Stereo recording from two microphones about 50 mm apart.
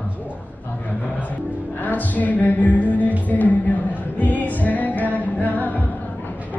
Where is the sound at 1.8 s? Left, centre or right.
Left.